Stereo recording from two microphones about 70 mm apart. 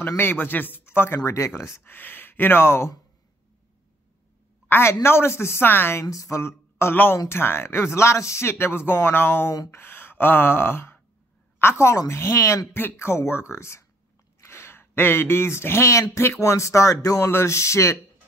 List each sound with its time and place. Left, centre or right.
0.2 s speech: left
1.8 s speech: left
4.6 s a woman's voice: left
6.0 s a woman's voice: left
12.1 s a sound: left
12.7 s speech: left
17.2 s a sound: left